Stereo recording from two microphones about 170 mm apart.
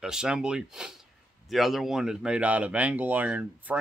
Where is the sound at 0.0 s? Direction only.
5° right (ahead or behind).